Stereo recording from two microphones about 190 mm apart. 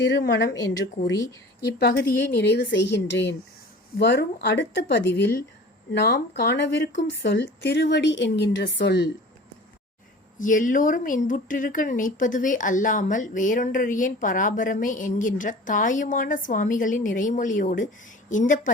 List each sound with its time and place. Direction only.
0.1 s a woman's voice: 65° left (ahead or behind)
1.6 s speech: 60° left (ahead or behind)
10.3 s speech: 45° left (ahead or behind)